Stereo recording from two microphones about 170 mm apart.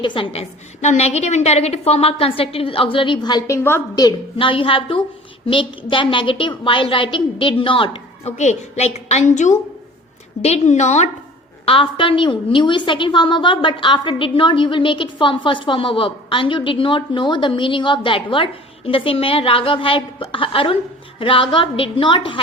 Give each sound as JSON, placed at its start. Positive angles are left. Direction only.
{"t": 0.0, "sound": "a woman's voice", "side_deg": 30}
{"t": 0.8, "sound": "a woman's voice", "side_deg": 40}
{"t": 8.4, "sound": "a woman's voice", "side_deg": 40}